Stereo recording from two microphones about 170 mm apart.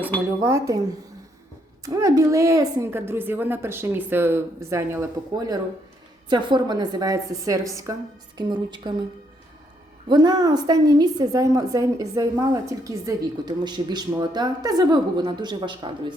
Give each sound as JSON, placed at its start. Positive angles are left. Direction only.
{"t": 0.4, "sound": "a woman's voice", "side_deg": -20}
{"t": 10.1, "sound": "a woman's voice", "side_deg": -25}